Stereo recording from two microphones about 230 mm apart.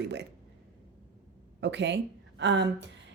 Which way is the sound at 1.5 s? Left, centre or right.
Right.